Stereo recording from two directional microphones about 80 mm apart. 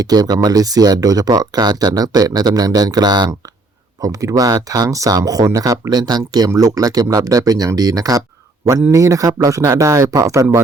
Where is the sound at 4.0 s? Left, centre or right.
Right.